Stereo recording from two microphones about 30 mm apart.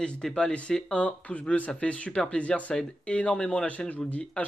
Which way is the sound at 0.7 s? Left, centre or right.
Centre.